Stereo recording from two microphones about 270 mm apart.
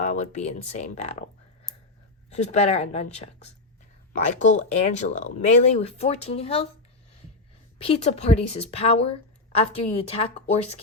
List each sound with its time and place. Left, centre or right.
0.0 s speech: left
2.3 s speech: left
7.8 s speech: left